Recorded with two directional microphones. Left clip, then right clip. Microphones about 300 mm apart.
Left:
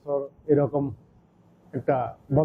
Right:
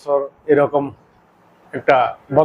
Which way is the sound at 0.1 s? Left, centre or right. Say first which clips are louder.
Right 8 dB; centre.